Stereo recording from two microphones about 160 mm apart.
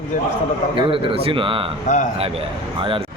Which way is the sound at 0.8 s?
35° right (ahead or behind).